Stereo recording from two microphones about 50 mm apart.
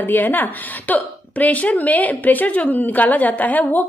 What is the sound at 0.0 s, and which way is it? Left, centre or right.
A woman's voice, left.